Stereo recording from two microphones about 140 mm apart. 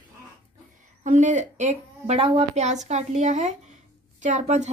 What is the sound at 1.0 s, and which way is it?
A woman's voice, 60° right (ahead or behind).